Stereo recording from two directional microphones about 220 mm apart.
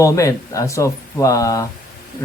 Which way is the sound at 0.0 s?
15° left (ahead or behind).